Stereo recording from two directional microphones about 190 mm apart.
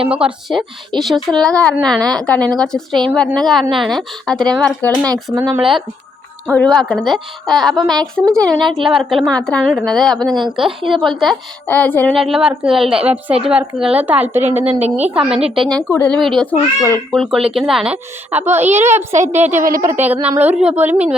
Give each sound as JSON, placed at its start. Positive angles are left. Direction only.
{"t": 0.1, "sound": "a woman's voice", "side_deg": -5}
{"t": 5.0, "sound": "a woman's voice", "side_deg": -15}
{"t": 12.1, "sound": "a woman's voice", "side_deg": 0}
{"t": 14.6, "sound": "a woman's voice", "side_deg": -35}
{"t": 15.1, "sound": "a woman's voice", "side_deg": -5}
{"t": 19.1, "sound": "a woman's voice", "side_deg": -40}
{"t": 19.7, "sound": "a woman's voice", "side_deg": -15}